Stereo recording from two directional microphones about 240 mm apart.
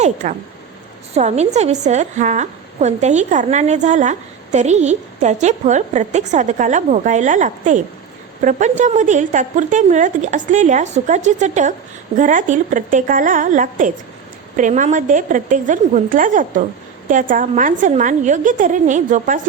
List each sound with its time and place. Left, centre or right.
0.0 s a woman's voice: right